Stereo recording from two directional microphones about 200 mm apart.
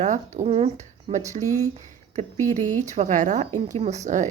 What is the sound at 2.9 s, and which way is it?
A woman's voice, 35° right (ahead or behind).